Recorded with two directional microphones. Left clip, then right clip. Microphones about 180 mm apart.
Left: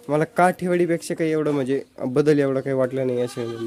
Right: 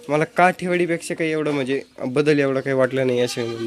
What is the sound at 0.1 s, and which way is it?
Speech, 20° left (ahead or behind).